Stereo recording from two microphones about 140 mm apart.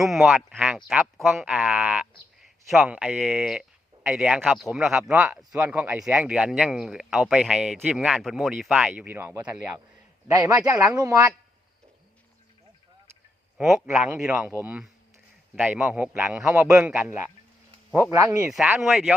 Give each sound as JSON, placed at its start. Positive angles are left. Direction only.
{"t": 0.0, "sound": "speech", "side_deg": 0}
{"t": 9.6, "sound": "speech", "side_deg": -5}
{"t": 10.2, "sound": "a man's voice", "side_deg": -25}
{"t": 10.7, "sound": "speech", "side_deg": -10}
{"t": 10.9, "sound": "a man's voice", "side_deg": -25}
{"t": 13.6, "sound": "speech", "side_deg": -5}
{"t": 16.5, "sound": "a man's voice", "side_deg": -20}
{"t": 16.7, "sound": "speech", "side_deg": -5}
{"t": 17.9, "sound": "speech", "side_deg": -20}
{"t": 18.8, "sound": "speech", "side_deg": 0}